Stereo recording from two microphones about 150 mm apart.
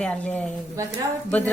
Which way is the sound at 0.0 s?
10° left (ahead or behind).